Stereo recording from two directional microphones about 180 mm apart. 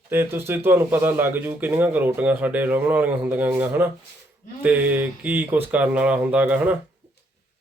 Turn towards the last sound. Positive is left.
turn(degrees=-10)  # may be behind; listen again after turning